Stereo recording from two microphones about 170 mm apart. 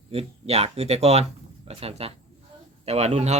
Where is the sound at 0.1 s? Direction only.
35° right (ahead or behind).